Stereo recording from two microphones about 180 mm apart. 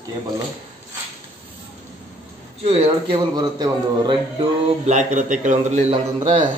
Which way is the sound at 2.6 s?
25° right (ahead or behind).